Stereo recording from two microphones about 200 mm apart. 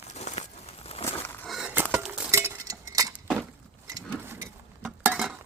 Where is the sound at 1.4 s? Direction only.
Centre (ahead or behind).